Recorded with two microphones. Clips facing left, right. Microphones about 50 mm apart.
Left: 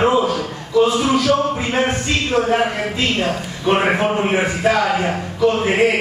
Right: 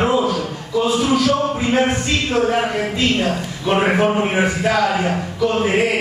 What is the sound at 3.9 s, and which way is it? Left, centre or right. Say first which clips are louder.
Speech: even; centre.